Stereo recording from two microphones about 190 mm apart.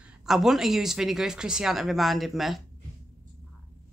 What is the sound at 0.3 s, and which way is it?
Speech, centre (ahead or behind).